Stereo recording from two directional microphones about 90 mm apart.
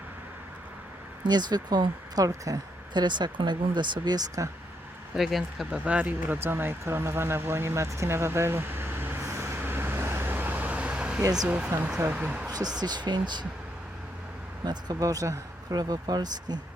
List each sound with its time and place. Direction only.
1.2 s speech: 55° right (ahead or behind)
2.9 s speech: 55° right (ahead or behind)
5.1 s speech: 5° right (ahead or behind)
11.2 s speech: 45° right (ahead or behind)
11.4 s speech: 15° right (ahead or behind)
12.5 s speech: 45° right (ahead or behind)
14.6 s speech: 50° right (ahead or behind)